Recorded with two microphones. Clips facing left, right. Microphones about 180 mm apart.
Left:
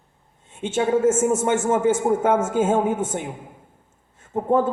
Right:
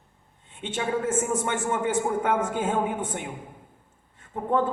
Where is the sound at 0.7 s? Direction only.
25° left (ahead or behind).